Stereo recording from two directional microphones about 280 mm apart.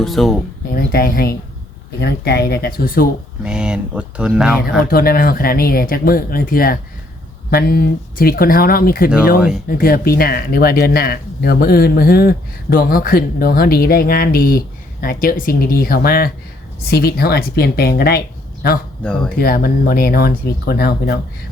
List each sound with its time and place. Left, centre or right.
0.0 s speech: centre
0.7 s speech: left
3.4 s speech: centre
4.8 s speech: left